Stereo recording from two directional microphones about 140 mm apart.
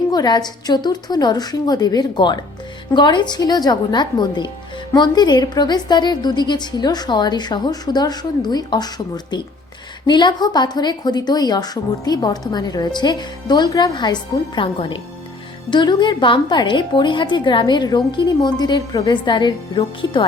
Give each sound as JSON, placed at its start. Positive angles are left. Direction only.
{"t": 0.1, "sound": "a woman's voice", "side_deg": 30}